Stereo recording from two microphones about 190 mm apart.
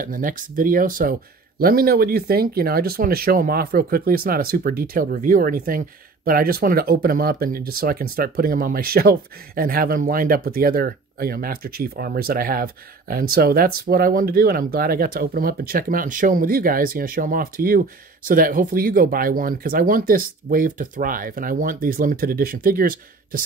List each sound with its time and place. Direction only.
0.0 s speech: 45° right (ahead or behind)